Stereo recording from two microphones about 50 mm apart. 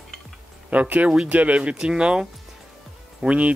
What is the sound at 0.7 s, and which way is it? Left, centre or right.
Speech, right.